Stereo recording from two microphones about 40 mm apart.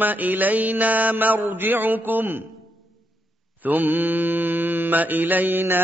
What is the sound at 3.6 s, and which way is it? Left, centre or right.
Mantra, right.